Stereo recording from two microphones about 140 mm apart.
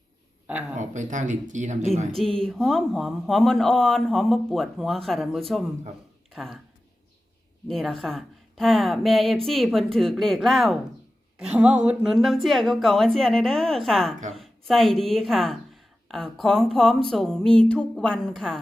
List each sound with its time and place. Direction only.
0.8 s speech: 60° right (ahead or behind)
2.1 s speech: 5° left (ahead or behind)
7.7 s speech: centre (ahead or behind)